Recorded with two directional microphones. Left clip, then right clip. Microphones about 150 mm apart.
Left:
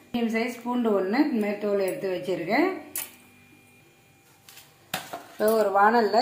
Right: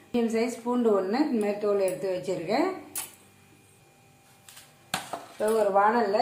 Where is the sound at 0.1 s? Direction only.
30° left (ahead or behind).